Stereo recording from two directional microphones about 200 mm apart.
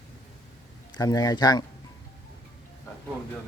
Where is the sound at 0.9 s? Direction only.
20° left (ahead or behind).